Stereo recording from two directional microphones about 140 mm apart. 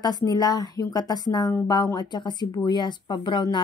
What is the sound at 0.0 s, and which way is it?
A woman's voice, 30° left (ahead or behind).